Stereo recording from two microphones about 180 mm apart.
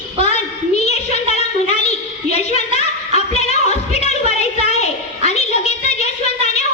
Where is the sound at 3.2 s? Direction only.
35° left (ahead or behind).